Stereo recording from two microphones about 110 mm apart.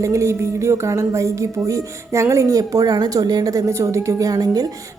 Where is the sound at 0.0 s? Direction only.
25° right (ahead or behind).